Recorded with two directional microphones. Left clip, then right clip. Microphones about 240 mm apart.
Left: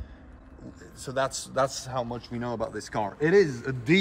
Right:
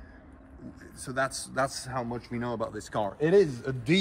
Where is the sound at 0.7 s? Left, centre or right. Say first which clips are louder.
Left 2 dB; centre.